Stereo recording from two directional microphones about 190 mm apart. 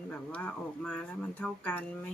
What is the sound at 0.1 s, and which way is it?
Speech, 5° left (ahead or behind).